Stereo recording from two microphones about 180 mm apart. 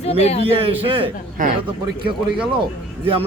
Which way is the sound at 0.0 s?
35° left (ahead or behind).